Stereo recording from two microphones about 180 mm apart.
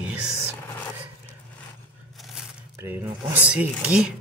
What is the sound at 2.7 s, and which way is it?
Speech, 10° right (ahead or behind).